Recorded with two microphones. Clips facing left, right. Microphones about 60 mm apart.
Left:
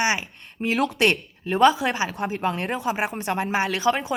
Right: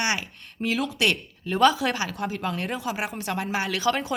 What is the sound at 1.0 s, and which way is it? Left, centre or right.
Speech, left.